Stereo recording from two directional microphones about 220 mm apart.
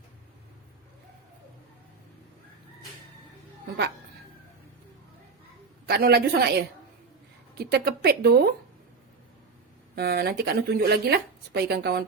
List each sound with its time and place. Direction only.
5.8 s speech: 45° right (ahead or behind)
9.9 s speech: 45° right (ahead or behind)